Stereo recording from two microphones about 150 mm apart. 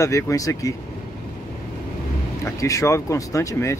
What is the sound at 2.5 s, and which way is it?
Speech, 20° left (ahead or behind).